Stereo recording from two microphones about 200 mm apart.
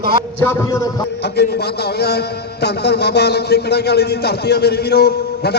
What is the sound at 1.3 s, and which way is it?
A man's voice, 55° left (ahead or behind).